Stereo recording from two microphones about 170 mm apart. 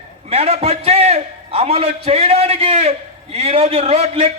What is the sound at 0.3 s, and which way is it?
A man's voice, 35° right (ahead or behind).